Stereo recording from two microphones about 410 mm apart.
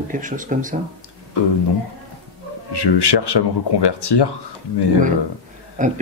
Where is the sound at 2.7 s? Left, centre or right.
Left.